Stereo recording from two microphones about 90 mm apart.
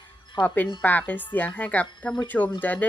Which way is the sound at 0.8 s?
20° left (ahead or behind).